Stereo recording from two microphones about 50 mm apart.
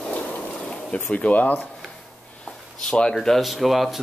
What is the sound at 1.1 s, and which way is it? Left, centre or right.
Speech, left.